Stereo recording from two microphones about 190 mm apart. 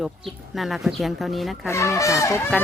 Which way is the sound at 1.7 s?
15° left (ahead or behind).